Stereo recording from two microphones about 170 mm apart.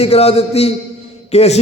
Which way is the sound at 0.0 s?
40° left (ahead or behind).